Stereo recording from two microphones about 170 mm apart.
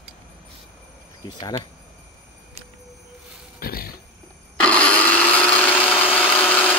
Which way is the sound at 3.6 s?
60° left (ahead or behind).